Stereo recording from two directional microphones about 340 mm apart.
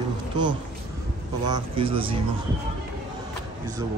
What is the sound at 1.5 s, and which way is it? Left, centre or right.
Speech, centre.